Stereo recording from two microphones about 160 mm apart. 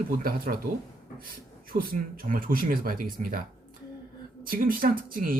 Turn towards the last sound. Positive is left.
turn(degrees=-60)  # may be behind; listen again after turning